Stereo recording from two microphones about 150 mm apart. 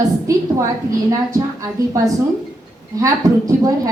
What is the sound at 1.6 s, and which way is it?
A woman's voice, 20° right (ahead or behind).